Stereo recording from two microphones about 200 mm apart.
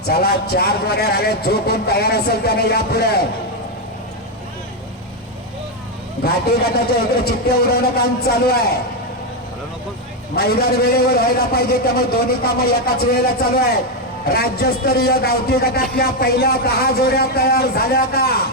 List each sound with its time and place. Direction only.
0.1 s speech: 50° left (ahead or behind)
7.3 s speech: 50° left (ahead or behind)
10.3 s speech: 50° left (ahead or behind)